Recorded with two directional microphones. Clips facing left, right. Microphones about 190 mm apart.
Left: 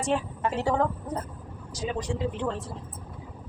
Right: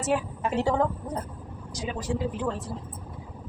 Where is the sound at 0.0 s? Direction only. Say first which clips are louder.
Even; 10° right (ahead or behind).